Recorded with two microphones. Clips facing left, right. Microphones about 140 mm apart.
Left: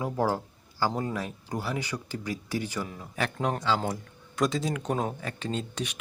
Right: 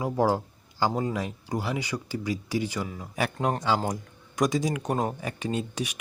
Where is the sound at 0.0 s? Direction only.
15° right (ahead or behind).